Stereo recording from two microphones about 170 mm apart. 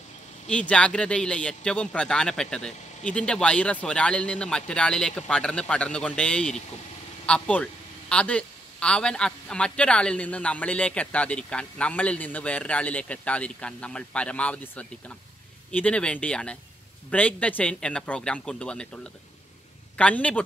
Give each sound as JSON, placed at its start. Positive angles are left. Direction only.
{"t": 0.5, "sound": "a man's voice", "side_deg": 5}
{"t": 20.0, "sound": "a man's voice", "side_deg": 10}